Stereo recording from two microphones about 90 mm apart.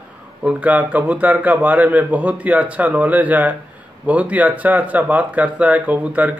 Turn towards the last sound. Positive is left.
turn(degrees=-15)  # may be behind; listen again after turning